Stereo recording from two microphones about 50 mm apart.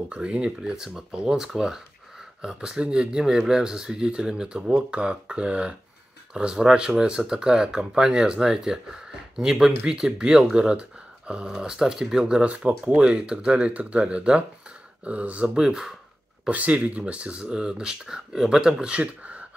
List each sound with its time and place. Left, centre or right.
0.1 s speech: right
0.6 s speech: centre; by 15.5 s right
15.5 s speech: centre
16.4 s speech: right